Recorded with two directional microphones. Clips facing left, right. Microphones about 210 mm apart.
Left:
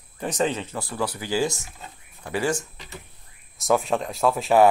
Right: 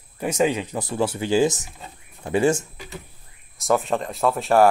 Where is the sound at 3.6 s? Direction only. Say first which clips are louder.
Right 1 dB; centre (ahead or behind).